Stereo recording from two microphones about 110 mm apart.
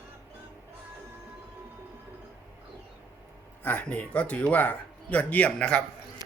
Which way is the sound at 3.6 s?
15° left (ahead or behind).